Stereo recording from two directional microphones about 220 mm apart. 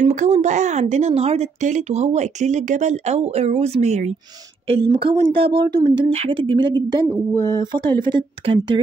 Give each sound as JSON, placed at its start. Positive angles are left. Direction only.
{"t": 0.0, "sound": "speech", "side_deg": -30}